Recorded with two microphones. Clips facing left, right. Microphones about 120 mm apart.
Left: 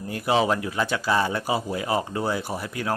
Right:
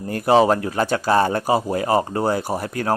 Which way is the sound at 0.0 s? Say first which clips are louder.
Right 7 dB; 45° right (ahead or behind).